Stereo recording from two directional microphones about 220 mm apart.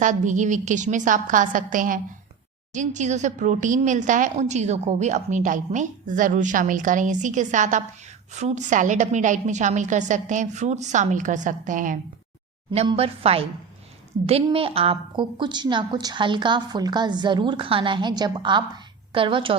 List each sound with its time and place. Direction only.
0.0 s a woman's voice: 35° right (ahead or behind)